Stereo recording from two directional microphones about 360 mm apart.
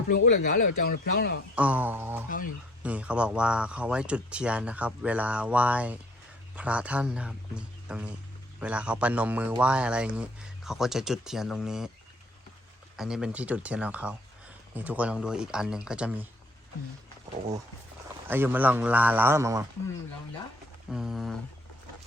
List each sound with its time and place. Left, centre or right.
0.1 s speech: left
0.5 s speech: left
0.8 s speech: left
1.5 s speech: centre
13.0 s speech: centre
18.3 s speech: centre
20.9 s speech: centre